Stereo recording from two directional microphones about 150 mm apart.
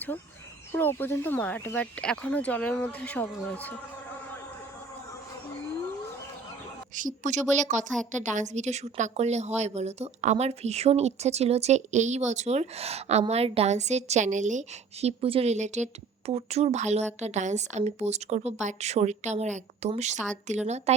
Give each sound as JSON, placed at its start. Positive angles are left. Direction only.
{"t": 0.7, "sound": "speech", "side_deg": 15}
{"t": 6.9, "sound": "a woman's voice", "side_deg": -60}